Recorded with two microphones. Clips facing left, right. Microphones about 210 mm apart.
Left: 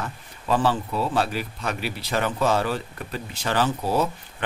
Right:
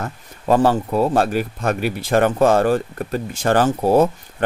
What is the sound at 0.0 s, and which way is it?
Speech, 45° right (ahead or behind).